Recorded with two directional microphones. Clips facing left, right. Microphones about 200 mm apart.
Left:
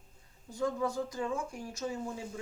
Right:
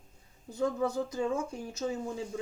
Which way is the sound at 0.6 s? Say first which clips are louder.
Right 2 dB; 25° right (ahead or behind).